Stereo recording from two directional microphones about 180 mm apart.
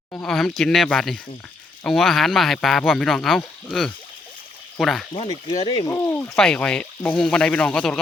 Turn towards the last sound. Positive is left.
turn(degrees=5)  # may be behind; listen again after turning